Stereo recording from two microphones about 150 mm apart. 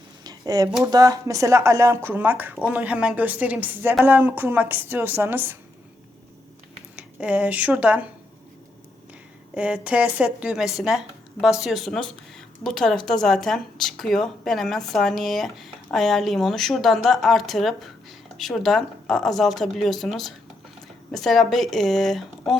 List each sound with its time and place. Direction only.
0.3 s a sound: 25° right (ahead or behind)
0.9 s speech: 25° right (ahead or behind)
6.9 s speech: 10° right (ahead or behind)
9.6 s speech: 10° right (ahead or behind)